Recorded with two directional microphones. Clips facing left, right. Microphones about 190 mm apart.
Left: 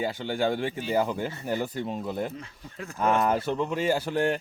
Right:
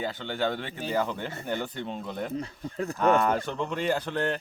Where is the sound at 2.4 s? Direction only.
35° right (ahead or behind).